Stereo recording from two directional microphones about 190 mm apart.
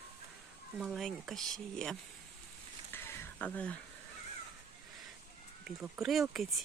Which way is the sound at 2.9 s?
10° left (ahead or behind).